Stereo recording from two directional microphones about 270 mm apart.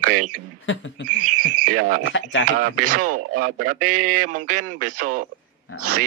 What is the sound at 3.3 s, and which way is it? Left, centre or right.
A man's voice, right.